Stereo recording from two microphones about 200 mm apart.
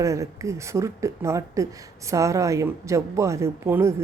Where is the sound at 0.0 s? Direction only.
15° right (ahead or behind).